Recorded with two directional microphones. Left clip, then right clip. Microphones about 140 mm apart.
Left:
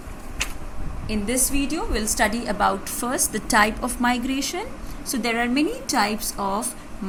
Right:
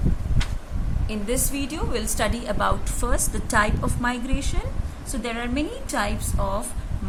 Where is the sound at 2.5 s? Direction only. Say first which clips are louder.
Left 3 dB; 15° left (ahead or behind).